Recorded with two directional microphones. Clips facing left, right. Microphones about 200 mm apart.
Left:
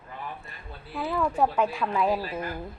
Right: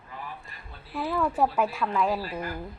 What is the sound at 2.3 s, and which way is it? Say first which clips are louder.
Speech: left 1 dB; 20° left (ahead or behind).